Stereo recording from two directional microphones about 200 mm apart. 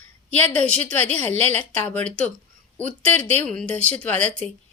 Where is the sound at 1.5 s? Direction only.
10° left (ahead or behind).